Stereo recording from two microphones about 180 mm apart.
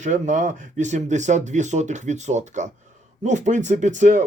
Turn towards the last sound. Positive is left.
turn(degrees=-45)  # may be behind; listen again after turning